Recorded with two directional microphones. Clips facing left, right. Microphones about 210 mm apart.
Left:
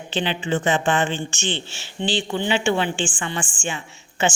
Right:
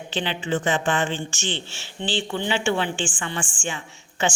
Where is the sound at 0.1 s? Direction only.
20° left (ahead or behind).